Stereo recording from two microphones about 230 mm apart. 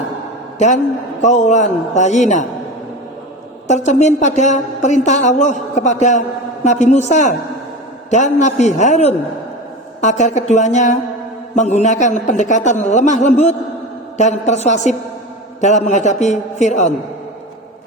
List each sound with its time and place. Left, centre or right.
1.2 s a woman's voice: left
3.7 s a woman's voice: left